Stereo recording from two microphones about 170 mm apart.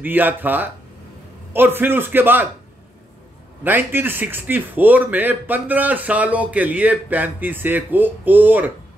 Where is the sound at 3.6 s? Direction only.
10° right (ahead or behind).